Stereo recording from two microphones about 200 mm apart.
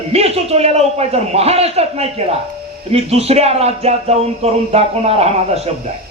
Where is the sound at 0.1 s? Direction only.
30° right (ahead or behind).